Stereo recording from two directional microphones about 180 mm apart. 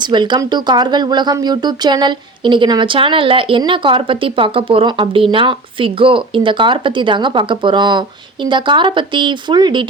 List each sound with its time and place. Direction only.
0.0 s speech: 25° right (ahead or behind)